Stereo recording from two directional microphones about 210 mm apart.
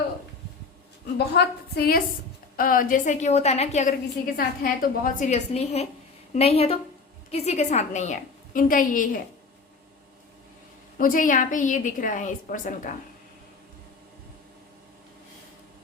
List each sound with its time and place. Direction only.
1.2 s a woman's voice: 50° left (ahead or behind)
10.9 s a woman's voice: 40° left (ahead or behind)